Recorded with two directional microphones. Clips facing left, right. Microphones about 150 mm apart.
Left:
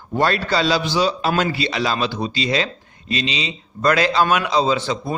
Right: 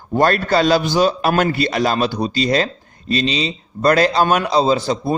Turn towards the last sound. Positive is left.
turn(degrees=-35)  # may be behind; listen again after turning